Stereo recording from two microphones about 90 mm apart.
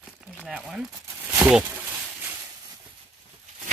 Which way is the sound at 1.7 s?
20° right (ahead or behind).